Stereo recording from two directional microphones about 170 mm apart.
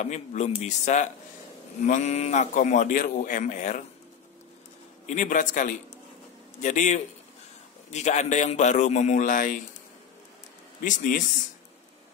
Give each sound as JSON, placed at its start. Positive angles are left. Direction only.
{"t": 0.0, "sound": "a man's voice", "side_deg": 45}
{"t": 5.0, "sound": "a man's voice", "side_deg": 50}
{"t": 10.8, "sound": "a man's voice", "side_deg": 50}